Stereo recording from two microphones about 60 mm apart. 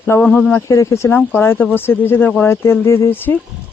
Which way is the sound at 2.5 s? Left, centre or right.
Left.